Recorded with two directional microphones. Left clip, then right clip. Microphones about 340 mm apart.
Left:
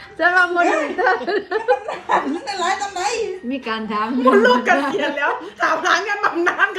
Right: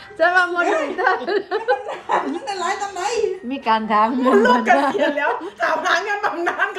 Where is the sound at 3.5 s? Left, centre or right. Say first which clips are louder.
Right 6 dB; centre.